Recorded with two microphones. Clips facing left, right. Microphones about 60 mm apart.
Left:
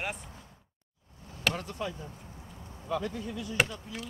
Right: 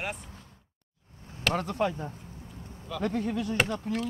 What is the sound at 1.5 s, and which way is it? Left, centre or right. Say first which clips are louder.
Speech: right 7 dB; right.